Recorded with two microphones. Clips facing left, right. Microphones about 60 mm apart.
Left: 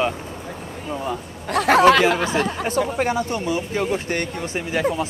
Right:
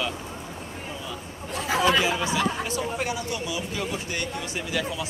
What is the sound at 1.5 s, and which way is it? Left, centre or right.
Speech, left.